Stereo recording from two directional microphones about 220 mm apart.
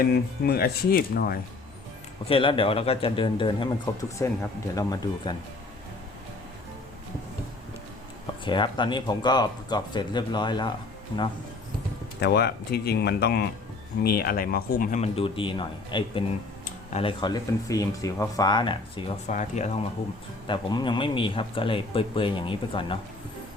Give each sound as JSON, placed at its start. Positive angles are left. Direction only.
{"t": 0.0, "sound": "speech", "side_deg": 45}
{"t": 2.3, "sound": "speech", "side_deg": 25}
{"t": 8.4, "sound": "speech", "side_deg": 20}
{"t": 12.2, "sound": "speech", "side_deg": 45}
{"t": 20.5, "sound": "speech", "side_deg": 20}